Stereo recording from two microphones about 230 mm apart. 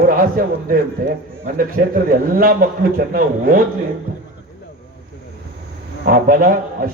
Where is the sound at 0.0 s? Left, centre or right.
Right.